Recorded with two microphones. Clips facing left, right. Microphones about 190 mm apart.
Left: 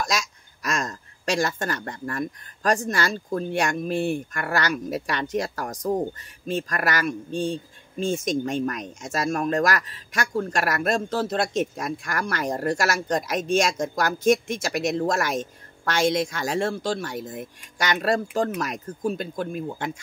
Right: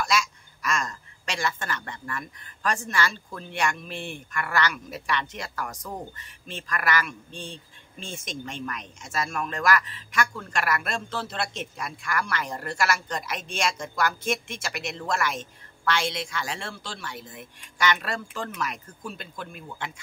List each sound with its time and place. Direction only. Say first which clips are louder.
0.0 s speech: right 1 dB; 40° left (ahead or behind)